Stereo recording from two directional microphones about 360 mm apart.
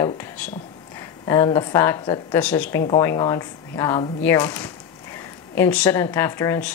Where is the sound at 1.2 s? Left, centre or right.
Centre.